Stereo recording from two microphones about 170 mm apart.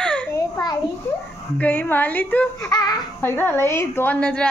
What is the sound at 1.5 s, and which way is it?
A child's voice, 10° left (ahead or behind).